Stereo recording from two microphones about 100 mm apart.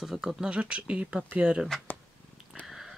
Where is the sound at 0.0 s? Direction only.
Centre (ahead or behind).